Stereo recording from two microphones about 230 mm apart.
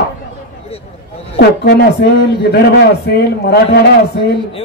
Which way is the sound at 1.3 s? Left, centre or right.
Left.